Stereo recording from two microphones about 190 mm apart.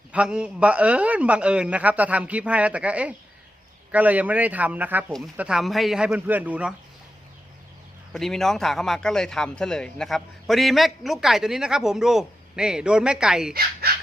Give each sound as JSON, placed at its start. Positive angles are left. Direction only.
{"t": 0.1, "sound": "a man's voice", "side_deg": -5}
{"t": 8.1, "sound": "a man's voice", "side_deg": 0}
{"t": 13.5, "sound": "speech", "side_deg": -55}